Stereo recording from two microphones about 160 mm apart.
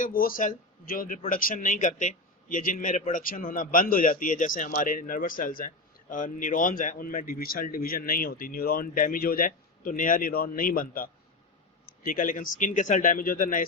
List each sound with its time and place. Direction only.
0.0 s speech: 65° left (ahead or behind)